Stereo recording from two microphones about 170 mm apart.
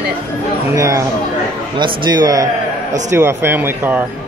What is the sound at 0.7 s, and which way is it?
Speech, 20° right (ahead or behind).